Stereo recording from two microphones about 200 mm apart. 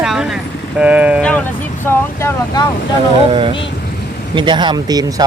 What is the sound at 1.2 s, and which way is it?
Vehicle, 5° left (ahead or behind).